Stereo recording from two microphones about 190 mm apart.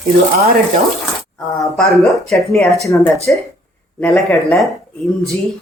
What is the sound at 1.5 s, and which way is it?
Speech, centre (ahead or behind).